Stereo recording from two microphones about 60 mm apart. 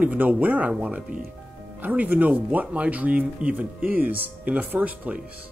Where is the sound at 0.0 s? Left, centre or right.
Right.